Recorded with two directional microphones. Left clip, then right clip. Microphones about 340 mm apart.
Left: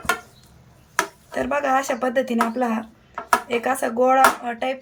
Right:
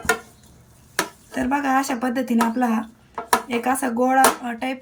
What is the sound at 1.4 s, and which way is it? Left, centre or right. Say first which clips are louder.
Speech: even; centre.